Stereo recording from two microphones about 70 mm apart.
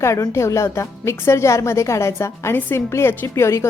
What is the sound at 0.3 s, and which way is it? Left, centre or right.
A woman's voice, left.